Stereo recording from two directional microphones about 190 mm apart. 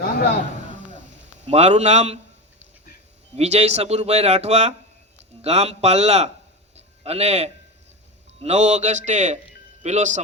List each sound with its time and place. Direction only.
1.5 s speech: 35° right (ahead or behind)
3.3 s speech: 35° right (ahead or behind)
6.7 s a sound: 35° right (ahead or behind)
8.4 s a man's voice: 35° right (ahead or behind)